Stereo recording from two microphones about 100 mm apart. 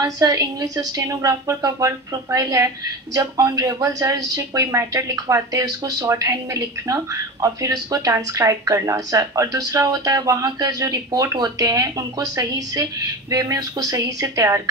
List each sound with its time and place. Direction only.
0.0 s speech: 35° right (ahead or behind)